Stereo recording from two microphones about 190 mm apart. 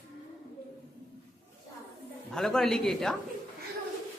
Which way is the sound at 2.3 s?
Centre (ahead or behind).